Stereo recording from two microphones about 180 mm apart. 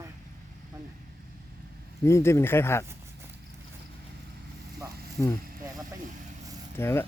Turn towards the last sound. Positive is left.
turn(degrees=15)  # may be behind; listen again after turning